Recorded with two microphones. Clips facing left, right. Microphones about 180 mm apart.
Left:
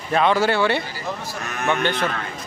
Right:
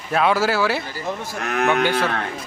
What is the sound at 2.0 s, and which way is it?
Speech, 65° right (ahead or behind).